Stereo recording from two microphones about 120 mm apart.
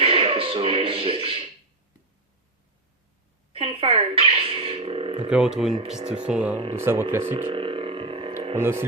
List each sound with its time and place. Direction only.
0.0 s beatboxing: 50° right (ahead or behind)
3.5 s speech: 50° right (ahead or behind)
5.3 s speech: 5° right (ahead or behind)
6.7 s speech: 20° right (ahead or behind)
7.5 s a sound: 50° right (ahead or behind)
8.5 s speech: 20° right (ahead or behind)